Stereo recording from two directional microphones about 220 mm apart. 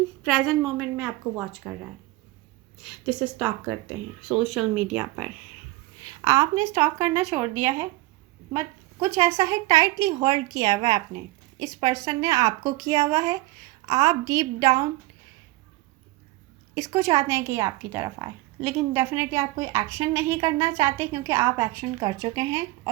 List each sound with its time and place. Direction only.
0.2 s speech: 5° left (ahead or behind); by 14.8 s 15° right (ahead or behind)
16.7 s speech: 15° right (ahead or behind)